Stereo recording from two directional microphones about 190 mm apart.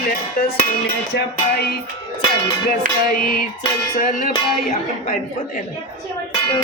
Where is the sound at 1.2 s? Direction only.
55° left (ahead or behind).